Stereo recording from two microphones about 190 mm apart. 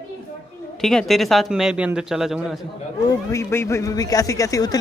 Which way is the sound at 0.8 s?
Centre (ahead or behind).